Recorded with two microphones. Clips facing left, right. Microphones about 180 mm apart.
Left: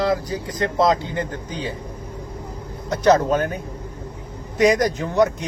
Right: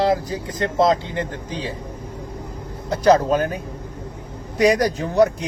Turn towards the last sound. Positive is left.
turn(degrees=-35)  # may be behind; listen again after turning